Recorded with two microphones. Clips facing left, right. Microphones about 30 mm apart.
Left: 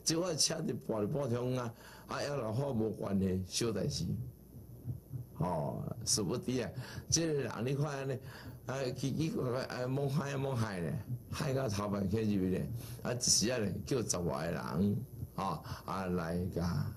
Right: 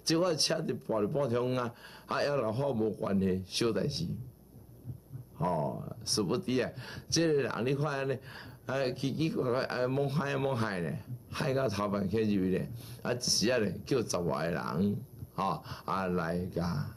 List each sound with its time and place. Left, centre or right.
0.0 s a man's voice: right
5.4 s a man's voice: right